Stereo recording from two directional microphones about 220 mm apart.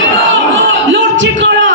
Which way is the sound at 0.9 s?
55° right (ahead or behind).